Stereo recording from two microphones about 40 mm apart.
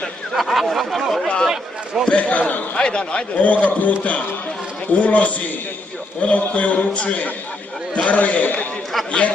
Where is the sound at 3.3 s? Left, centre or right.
Left.